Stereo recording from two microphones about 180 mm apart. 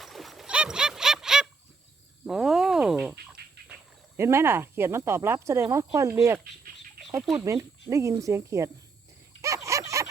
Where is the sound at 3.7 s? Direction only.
15° right (ahead or behind).